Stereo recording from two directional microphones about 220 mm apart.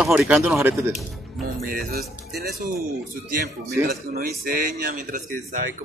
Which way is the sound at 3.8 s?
45° right (ahead or behind).